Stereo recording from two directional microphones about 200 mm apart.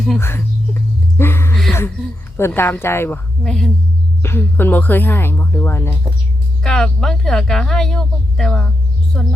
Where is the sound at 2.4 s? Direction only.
10° left (ahead or behind).